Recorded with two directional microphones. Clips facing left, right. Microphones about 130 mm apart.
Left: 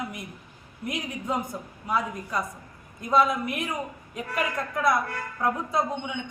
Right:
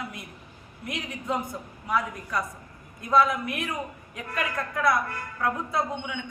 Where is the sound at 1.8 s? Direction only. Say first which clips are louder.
Even; 20° left (ahead or behind).